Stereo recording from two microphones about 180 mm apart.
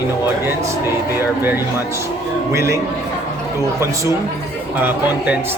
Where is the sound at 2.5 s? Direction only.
15° right (ahead or behind).